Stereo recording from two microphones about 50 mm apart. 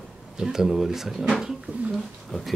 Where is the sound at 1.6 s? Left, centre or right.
Right.